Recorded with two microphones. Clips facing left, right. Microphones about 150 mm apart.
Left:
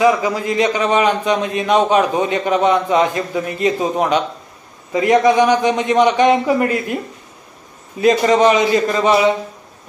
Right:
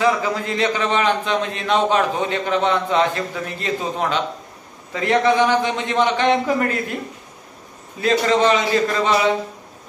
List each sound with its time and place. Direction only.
0.0 s a man's voice: 15° left (ahead or behind)
8.0 s a man's voice: 15° left (ahead or behind)